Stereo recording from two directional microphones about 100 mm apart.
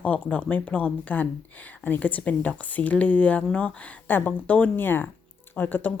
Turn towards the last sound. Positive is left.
turn(degrees=20)  # may be behind; listen again after turning